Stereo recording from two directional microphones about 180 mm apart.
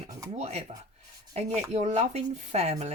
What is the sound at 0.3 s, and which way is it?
Speech, 35° right (ahead or behind).